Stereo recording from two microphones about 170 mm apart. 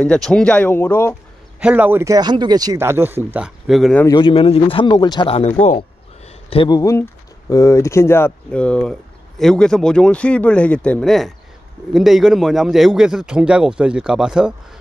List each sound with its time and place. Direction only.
0.0 s speech: 5° left (ahead or behind)
1.6 s speech: 10° right (ahead or behind)
4.1 s speech: 30° left (ahead or behind)
5.8 s a sound: 30° left (ahead or behind)
6.8 s a man's voice: 20° left (ahead or behind); by 14.5 s 5° right (ahead or behind)